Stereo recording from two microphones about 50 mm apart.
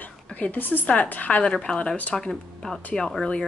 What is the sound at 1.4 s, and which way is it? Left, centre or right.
Speech, centre.